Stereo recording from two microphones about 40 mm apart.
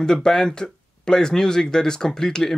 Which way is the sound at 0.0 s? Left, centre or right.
Centre.